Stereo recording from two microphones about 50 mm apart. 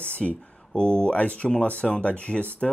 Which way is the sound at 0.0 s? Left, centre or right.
Left.